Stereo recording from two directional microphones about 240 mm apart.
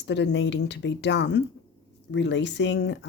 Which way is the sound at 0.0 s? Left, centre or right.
Left.